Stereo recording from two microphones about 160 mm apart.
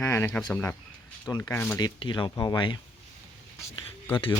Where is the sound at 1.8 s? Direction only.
30° left (ahead or behind).